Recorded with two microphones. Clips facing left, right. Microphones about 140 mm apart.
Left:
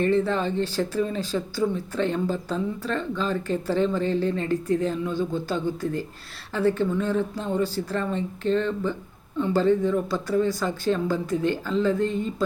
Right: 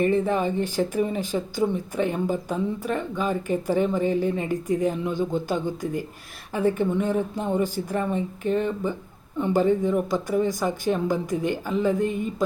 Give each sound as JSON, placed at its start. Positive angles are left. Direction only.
{"t": 0.0, "sound": "speech", "side_deg": -15}